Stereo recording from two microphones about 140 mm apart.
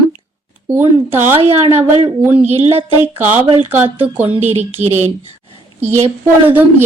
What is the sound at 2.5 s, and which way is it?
Speech, 45° right (ahead or behind).